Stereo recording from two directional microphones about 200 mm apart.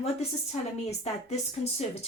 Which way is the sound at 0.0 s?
30° left (ahead or behind).